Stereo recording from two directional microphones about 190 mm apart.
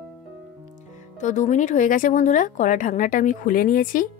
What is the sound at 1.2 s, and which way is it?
A woman's voice, 40° left (ahead or behind).